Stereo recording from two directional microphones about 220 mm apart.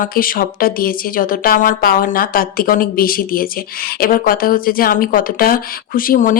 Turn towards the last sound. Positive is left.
turn(degrees=40)  # may be behind; listen again after turning